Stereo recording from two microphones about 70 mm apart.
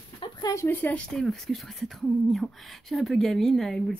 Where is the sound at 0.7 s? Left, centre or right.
Left.